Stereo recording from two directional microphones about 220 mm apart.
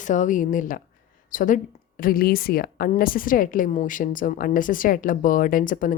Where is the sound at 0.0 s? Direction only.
35° left (ahead or behind).